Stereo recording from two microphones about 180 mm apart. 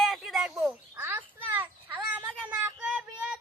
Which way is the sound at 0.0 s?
Centre (ahead or behind).